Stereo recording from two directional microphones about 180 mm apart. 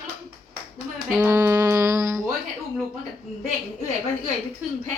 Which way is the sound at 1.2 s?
15° right (ahead or behind).